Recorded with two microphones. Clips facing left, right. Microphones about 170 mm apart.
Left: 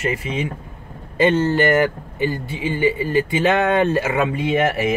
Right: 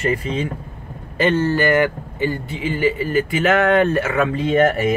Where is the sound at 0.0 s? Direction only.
40° right (ahead or behind).